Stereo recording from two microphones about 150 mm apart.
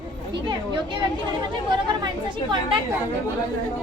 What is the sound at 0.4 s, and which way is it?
Speech, 30° right (ahead or behind).